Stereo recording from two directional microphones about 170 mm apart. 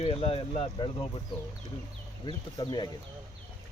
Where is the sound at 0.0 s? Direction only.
35° left (ahead or behind).